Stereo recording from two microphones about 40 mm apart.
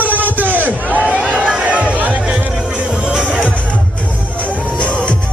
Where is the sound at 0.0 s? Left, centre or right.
Right.